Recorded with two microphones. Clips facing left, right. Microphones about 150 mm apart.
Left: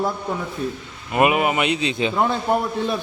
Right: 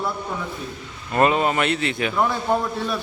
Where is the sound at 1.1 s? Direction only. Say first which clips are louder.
Left 1 dB; 15° left (ahead or behind).